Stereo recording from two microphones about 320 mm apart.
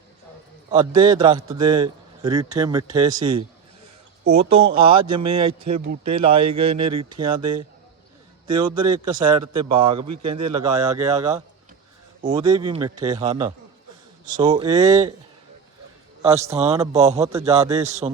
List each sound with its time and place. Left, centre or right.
0.7 s speech: centre
8.4 s a man's voice: right
11.2 s speech: centre
16.2 s a man's voice: centre